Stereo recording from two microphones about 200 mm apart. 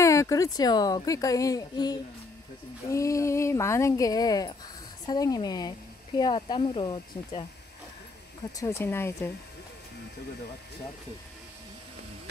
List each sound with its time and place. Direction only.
0.0 s a woman's voice: 15° left (ahead or behind)
8.5 s a woman's voice: 15° left (ahead or behind)